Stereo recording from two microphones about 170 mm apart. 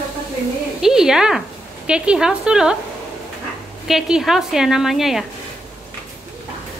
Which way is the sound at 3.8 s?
Centre (ahead or behind).